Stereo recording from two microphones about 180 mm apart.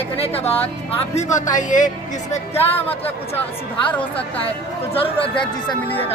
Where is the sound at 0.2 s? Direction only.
35° left (ahead or behind).